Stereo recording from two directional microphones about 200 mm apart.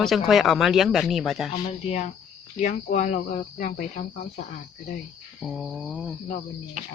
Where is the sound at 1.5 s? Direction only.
35° left (ahead or behind).